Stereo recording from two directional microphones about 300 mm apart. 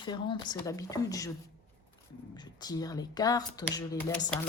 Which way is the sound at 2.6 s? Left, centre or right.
Centre.